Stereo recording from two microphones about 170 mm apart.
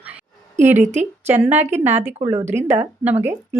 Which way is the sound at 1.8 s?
40° right (ahead or behind).